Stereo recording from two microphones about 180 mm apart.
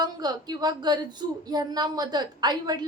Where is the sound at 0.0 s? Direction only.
20° right (ahead or behind).